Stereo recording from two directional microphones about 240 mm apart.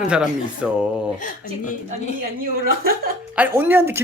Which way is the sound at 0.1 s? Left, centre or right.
Centre.